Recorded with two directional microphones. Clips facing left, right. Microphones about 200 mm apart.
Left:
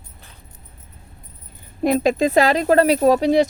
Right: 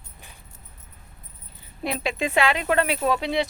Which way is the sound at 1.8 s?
45° left (ahead or behind).